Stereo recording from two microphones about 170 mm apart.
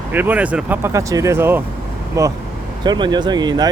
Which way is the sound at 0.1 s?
10° right (ahead or behind).